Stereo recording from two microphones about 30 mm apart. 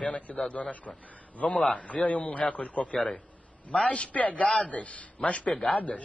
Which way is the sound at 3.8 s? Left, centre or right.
Left.